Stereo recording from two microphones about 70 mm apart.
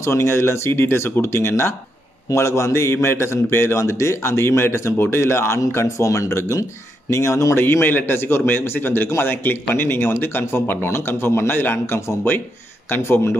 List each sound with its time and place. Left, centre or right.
0.0 s a man's voice: left
7.6 s a man's voice: left